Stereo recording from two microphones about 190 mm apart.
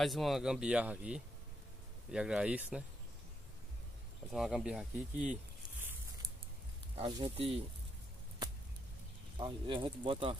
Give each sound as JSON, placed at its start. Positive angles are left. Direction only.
{"t": 0.0, "sound": "speech", "side_deg": 0}
{"t": 4.3, "sound": "speech", "side_deg": 0}
{"t": 7.0, "sound": "speech", "side_deg": -25}
{"t": 9.4, "sound": "speech", "side_deg": -25}